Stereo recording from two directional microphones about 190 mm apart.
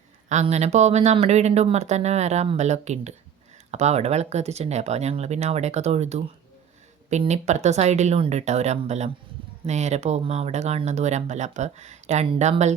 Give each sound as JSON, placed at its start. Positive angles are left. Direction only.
{"t": 0.3, "sound": "speech", "side_deg": -35}